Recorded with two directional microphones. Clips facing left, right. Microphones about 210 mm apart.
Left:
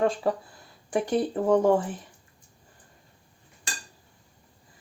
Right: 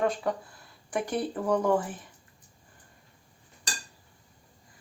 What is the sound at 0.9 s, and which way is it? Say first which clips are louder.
Speech: left 5 dB; 30° left (ahead or behind).